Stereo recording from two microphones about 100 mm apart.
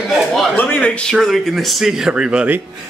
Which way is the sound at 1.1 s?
Centre (ahead or behind).